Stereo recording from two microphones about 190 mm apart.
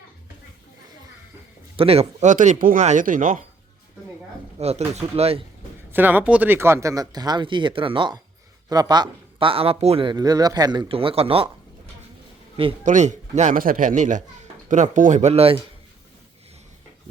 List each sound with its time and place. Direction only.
1.7 s speech: 30° right (ahead or behind)
4.6 s speech: 35° right (ahead or behind)
5.9 s speech: 10° right (ahead or behind); by 11.4 s 30° right (ahead or behind)
12.8 s speech: 40° right (ahead or behind)